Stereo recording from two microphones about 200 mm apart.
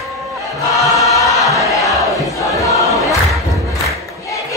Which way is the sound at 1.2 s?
15° left (ahead or behind).